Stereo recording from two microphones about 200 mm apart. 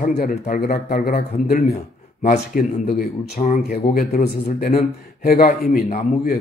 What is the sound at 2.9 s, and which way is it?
Speech, 50° left (ahead or behind).